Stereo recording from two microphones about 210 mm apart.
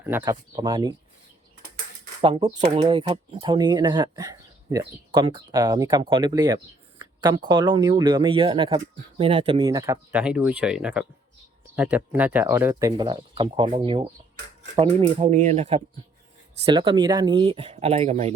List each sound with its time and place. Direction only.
0.0 s speech: 10° right (ahead or behind)
2.2 s speech: 20° right (ahead or behind)
16.7 s speech: 20° right (ahead or behind)